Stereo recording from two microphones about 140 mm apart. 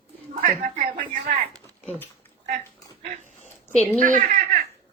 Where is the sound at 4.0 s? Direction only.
70° right (ahead or behind).